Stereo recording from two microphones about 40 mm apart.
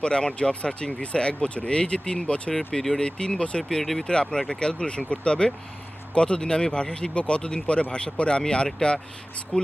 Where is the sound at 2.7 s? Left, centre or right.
Centre.